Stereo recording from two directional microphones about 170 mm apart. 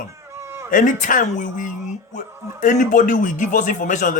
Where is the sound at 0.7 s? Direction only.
50° left (ahead or behind).